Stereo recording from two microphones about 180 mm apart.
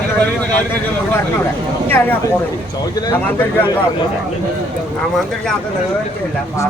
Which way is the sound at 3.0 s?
10° left (ahead or behind).